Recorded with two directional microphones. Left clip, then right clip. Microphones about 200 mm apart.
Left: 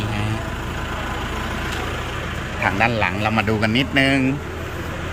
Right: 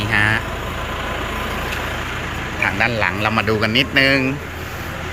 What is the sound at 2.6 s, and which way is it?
Speech, 15° left (ahead or behind).